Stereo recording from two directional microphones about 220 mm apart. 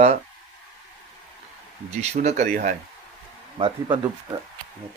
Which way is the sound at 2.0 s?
30° right (ahead or behind).